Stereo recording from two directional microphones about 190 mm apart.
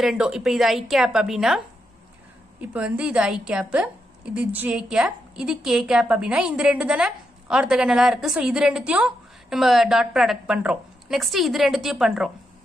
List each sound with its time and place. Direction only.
0.0 s a woman's voice: 5° right (ahead or behind)
2.7 s a woman's voice: 5° right (ahead or behind)